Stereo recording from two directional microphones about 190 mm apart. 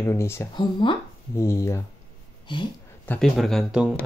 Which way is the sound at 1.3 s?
15° left (ahead or behind).